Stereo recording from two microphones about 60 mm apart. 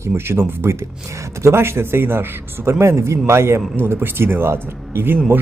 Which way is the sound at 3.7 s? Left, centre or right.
Right.